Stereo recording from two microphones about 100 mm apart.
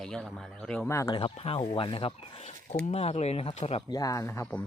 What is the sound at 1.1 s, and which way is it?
Speech, 65° left (ahead or behind).